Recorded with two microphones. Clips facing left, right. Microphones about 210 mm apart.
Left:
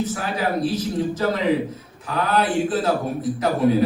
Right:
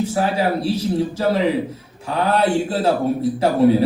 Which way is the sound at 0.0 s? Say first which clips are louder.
Right 5 dB; 30° right (ahead or behind).